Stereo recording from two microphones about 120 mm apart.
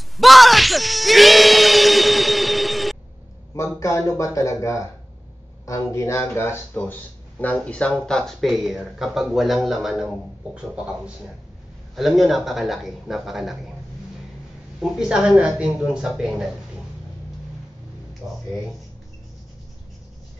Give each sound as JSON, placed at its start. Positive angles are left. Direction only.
{"t": 0.2, "sound": "a sound", "side_deg": 0}
{"t": 3.5, "sound": "speech", "side_deg": 25}
{"t": 14.8, "sound": "speech", "side_deg": -5}
{"t": 18.2, "sound": "speech", "side_deg": -20}